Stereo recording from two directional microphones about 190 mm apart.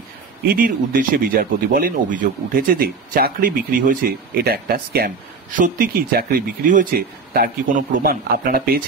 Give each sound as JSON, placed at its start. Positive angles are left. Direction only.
{"t": 0.5, "sound": "speech", "side_deg": -45}